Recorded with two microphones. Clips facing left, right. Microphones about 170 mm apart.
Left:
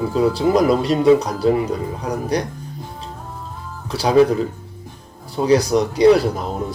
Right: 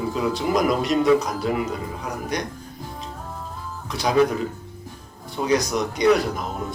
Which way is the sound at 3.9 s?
30° left (ahead or behind).